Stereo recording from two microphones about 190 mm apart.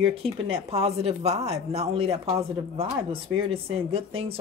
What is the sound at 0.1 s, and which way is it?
Speech, 30° right (ahead or behind).